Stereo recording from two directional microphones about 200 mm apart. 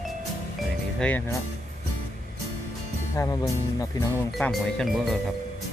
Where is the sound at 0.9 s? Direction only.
5° left (ahead or behind).